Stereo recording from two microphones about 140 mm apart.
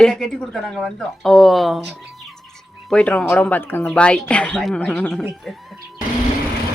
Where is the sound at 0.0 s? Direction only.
5° left (ahead or behind).